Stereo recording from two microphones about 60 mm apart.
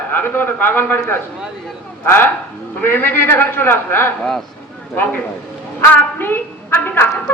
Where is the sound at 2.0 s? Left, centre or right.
Left.